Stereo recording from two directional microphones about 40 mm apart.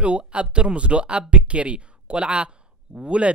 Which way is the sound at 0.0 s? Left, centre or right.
Right.